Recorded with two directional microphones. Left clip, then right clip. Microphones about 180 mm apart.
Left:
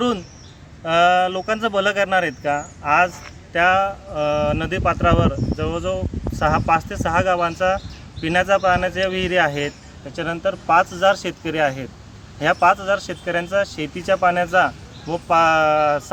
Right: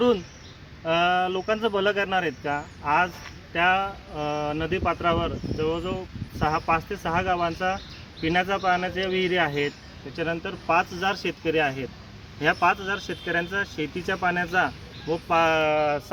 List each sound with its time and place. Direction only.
0.9 s speech: 20° left (ahead or behind)